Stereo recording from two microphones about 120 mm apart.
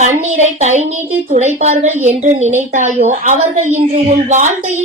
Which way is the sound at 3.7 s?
80° right.